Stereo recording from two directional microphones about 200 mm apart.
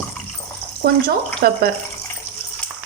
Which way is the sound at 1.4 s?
50° right (ahead or behind).